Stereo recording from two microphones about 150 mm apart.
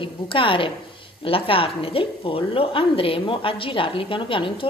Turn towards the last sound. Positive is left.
turn(degrees=35)  # may be behind; listen again after turning